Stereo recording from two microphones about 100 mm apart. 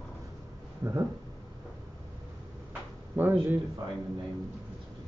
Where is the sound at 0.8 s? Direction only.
25° right (ahead or behind).